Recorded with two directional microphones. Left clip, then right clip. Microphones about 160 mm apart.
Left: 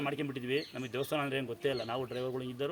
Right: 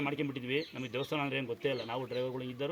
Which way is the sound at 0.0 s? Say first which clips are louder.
Even; 40° left (ahead or behind).